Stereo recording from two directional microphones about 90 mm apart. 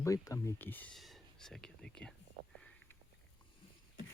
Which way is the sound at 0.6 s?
20° left (ahead or behind).